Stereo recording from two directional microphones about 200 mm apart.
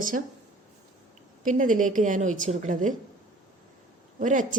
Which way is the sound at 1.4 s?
40° right (ahead or behind).